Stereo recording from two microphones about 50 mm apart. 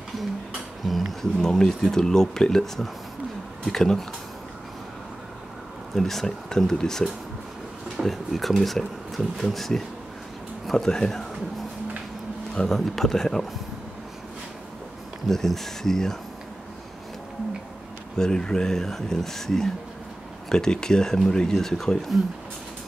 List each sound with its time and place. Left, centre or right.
0.8 s speech: centre
1.4 s speech: centre
5.9 s speech: centre
8.0 s speech: centre
12.5 s speech: centre
15.2 s speech: centre
18.1 s speech: centre